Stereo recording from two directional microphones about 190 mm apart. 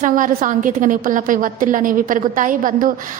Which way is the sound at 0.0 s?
45° right (ahead or behind).